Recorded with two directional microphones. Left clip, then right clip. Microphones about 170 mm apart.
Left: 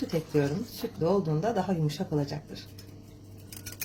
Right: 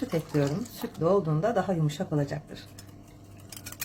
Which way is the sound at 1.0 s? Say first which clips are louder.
Right 2 dB; 20° right (ahead or behind).